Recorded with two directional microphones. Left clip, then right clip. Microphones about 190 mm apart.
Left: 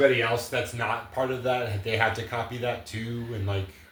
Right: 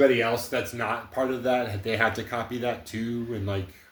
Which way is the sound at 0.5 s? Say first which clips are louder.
Even; 35° right (ahead or behind).